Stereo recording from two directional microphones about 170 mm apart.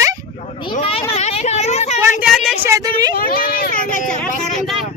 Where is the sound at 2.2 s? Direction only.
Centre (ahead or behind).